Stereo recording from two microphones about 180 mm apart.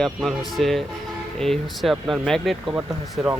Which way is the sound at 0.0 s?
Centre (ahead or behind).